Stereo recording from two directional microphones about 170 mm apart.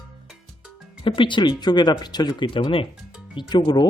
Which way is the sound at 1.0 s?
30° left (ahead or behind).